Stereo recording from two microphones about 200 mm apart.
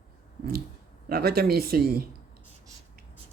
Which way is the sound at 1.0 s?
50° right (ahead or behind).